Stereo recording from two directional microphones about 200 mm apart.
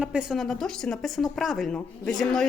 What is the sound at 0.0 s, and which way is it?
Speech, 5° right (ahead or behind).